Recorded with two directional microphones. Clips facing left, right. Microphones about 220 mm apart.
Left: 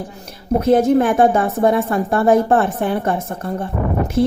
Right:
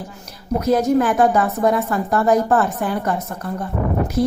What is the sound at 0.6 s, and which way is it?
A woman's voice, 30° left (ahead or behind).